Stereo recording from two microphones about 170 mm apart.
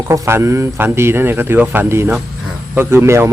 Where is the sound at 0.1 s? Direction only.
15° right (ahead or behind).